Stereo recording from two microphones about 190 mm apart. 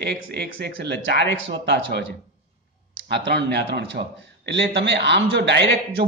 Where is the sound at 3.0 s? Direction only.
65° right (ahead or behind).